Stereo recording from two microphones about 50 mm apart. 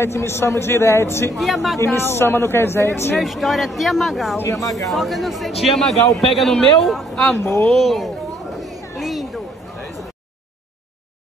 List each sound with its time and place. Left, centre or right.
0.0 s a man's voice: left
1.3 s a man's voice: centre
2.0 s a man's voice: left
3.2 s a man's voice: centre
4.5 s speech: left
4.8 s a man's voice: centre
8.5 s chatter: centre